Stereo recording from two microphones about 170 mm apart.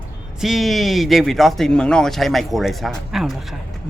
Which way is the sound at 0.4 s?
Centre (ahead or behind).